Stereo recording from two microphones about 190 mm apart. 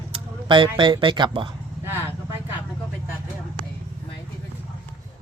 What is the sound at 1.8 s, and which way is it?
Vehicle, 10° right (ahead or behind).